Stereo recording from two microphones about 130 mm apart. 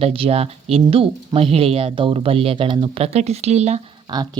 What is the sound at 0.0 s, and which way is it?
Speech, 45° right (ahead or behind).